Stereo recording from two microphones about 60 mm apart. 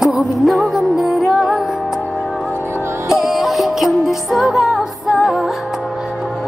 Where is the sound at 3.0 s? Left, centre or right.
Centre.